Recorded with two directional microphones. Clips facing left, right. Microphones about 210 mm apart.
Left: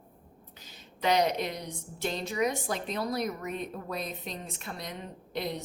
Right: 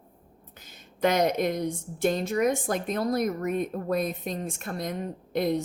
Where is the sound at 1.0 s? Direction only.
50° right (ahead or behind).